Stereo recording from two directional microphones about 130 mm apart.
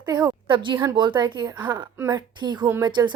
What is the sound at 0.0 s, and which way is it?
A woman's voice, 35° right (ahead or behind).